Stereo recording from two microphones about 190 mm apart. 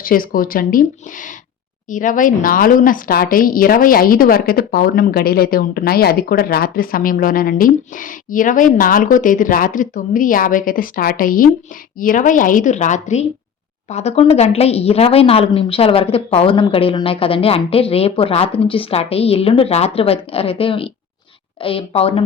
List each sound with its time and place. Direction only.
0.0 s speech: 50° left (ahead or behind); by 22.2 s 30° left (ahead or behind)